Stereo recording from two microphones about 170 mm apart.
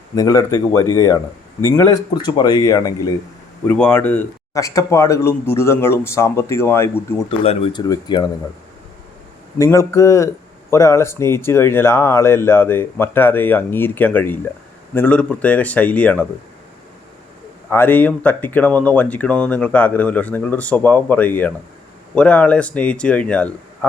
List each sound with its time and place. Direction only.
0.2 s speech: 20° left (ahead or behind)
3.7 s speech: 10° left (ahead or behind)
7.3 s speech: 35° left (ahead or behind)
9.6 s speech: 15° left (ahead or behind)
17.7 s speech: 10° left (ahead or behind)